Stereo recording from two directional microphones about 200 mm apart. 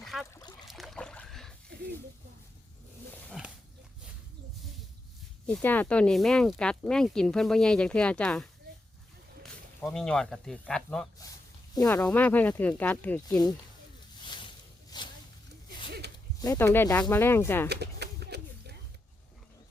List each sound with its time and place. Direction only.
0.0 s goose: centre (ahead or behind)
0.7 s boat: centre (ahead or behind)
3.4 s dog: 5° right (ahead or behind)
5.5 s speech: 5° left (ahead or behind)
9.9 s speech: 5° left (ahead or behind)
11.7 s speech: 15° left (ahead or behind)
13.2 s speech: 20° left (ahead or behind)
14.2 s a sound: 25° left (ahead or behind)
15.9 s zipper: 55° right (ahead or behind)
16.4 s speech: 15° left (ahead or behind)
17.7 s a sound: 55° right (ahead or behind)